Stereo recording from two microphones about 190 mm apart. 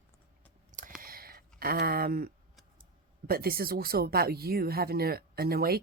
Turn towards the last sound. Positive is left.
turn(degrees=-55)  # may be behind; listen again after turning